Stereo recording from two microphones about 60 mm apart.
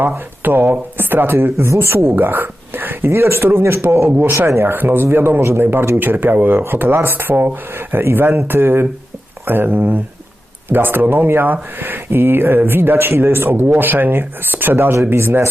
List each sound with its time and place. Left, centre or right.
0.0 s speech: right
1.7 s speech: right
2.1 s speech: right